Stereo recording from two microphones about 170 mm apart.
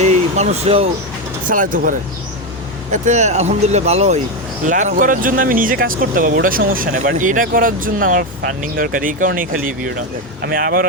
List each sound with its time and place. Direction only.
0.0 s vehicle: 40° right (ahead or behind)
1.5 s speech: 50° right (ahead or behind)